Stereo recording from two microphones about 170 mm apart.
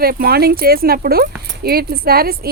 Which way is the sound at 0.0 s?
60° right (ahead or behind).